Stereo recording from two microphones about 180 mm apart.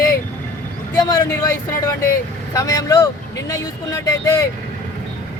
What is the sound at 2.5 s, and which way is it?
Speech, 20° left (ahead or behind).